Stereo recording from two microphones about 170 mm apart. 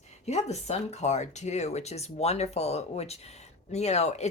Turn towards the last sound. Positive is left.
turn(degrees=40)  # may be behind; listen again after turning